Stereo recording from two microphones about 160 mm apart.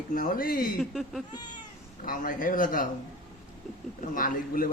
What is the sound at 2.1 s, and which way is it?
Speech, 60° left (ahead or behind).